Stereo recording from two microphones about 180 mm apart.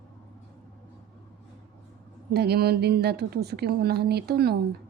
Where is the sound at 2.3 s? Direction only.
65° right (ahead or behind).